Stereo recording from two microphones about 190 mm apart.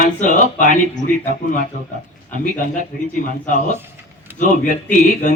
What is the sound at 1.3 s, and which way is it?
Speech, 40° right (ahead or behind).